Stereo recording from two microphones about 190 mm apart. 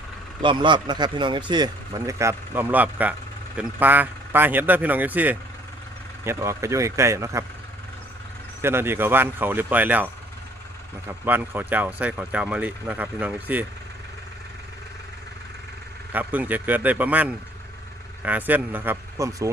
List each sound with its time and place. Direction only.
0.4 s speech: 25° right (ahead or behind)
8.6 s speech: 10° right (ahead or behind)
11.3 s speech: 10° right (ahead or behind)
16.1 s speech: 10° right (ahead or behind)